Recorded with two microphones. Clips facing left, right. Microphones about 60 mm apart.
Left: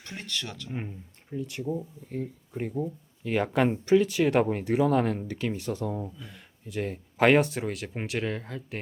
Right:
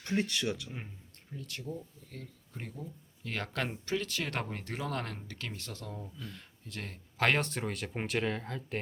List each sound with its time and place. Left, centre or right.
0.1 s speech: centre
0.7 s speech: left; by 8.8 s centre